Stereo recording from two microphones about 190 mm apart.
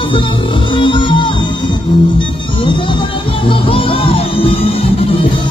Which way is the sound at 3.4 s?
30° left (ahead or behind).